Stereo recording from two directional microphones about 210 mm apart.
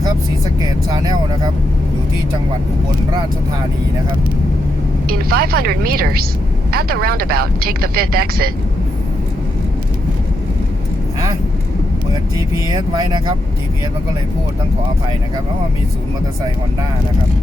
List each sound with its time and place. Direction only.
0.9 s speech: 20° right (ahead or behind)
5.0 s speech: 45° right (ahead or behind)
12.7 s speech: 20° right (ahead or behind)